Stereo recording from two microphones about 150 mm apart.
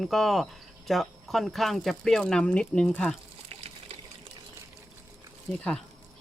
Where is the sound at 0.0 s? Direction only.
Centre (ahead or behind).